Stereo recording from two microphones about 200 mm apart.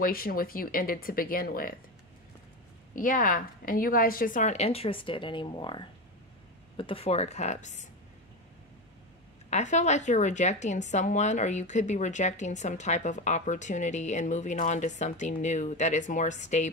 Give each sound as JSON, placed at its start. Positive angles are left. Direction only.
{"t": 0.0, "sound": "speech", "side_deg": 45}
{"t": 2.9, "sound": "a woman's voice", "side_deg": 45}
{"t": 9.5, "sound": "a woman's voice", "side_deg": 35}